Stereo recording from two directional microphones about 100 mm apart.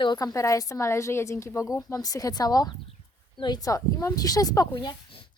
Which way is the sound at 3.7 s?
35° left (ahead or behind).